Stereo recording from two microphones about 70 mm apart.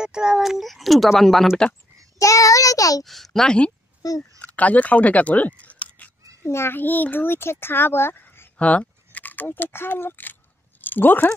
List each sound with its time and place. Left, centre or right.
0.0 s speech: centre
2.1 s child singing: left
3.0 s speech: centre
4.0 s child singing: left
4.4 s speech: left
5.6 s a sound: left
6.4 s a child's voice: left
8.5 s speech: centre